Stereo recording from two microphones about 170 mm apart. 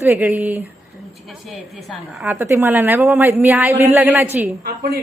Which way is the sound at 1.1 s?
Centre (ahead or behind).